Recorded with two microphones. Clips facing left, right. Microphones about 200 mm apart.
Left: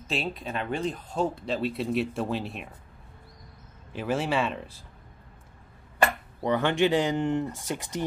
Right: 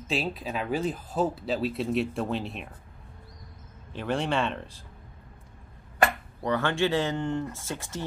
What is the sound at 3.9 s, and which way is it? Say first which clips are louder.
Speech: left 1 dB; 5° left (ahead or behind).